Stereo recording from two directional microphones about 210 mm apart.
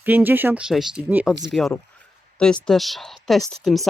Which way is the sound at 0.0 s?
10° right (ahead or behind).